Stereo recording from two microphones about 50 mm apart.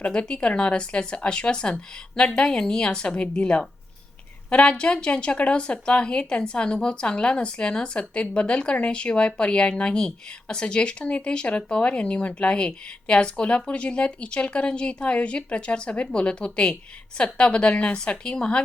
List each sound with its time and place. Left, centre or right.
0.0 s a woman's voice: centre